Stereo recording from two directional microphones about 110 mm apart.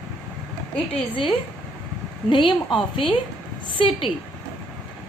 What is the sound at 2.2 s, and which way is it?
Speech, 45° left (ahead or behind).